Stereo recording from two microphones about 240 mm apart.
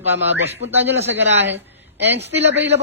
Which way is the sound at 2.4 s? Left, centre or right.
Right.